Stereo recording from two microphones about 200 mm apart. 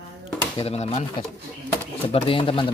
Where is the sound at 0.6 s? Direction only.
30° left (ahead or behind).